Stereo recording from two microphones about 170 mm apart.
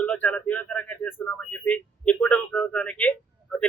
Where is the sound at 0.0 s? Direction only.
10° left (ahead or behind).